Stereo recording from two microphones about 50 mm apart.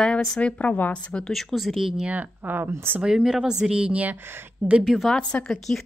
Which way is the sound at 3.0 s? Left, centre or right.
Centre.